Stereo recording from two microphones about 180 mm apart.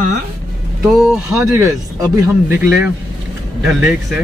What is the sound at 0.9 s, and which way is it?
Speech, centre (ahead or behind).